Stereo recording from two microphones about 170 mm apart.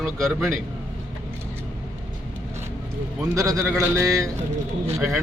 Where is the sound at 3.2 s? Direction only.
20° right (ahead or behind).